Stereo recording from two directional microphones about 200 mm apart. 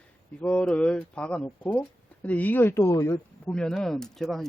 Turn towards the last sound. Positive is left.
turn(degrees=0)  # may be behind; listen again after turning